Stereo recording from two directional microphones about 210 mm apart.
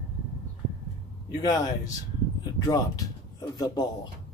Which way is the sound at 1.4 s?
15° left (ahead or behind).